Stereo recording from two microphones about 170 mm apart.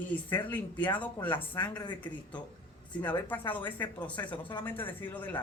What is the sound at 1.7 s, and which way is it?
Speech, 25° left (ahead or behind).